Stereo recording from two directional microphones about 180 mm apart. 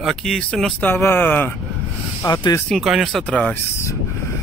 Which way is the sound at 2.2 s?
20° left (ahead or behind).